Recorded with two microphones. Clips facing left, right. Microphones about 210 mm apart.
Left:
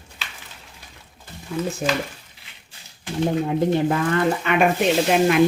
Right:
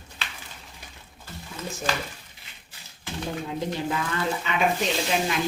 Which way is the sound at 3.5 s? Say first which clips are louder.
Left 9 dB; 55° left (ahead or behind).